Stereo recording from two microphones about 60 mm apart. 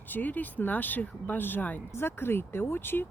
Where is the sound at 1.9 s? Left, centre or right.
Left.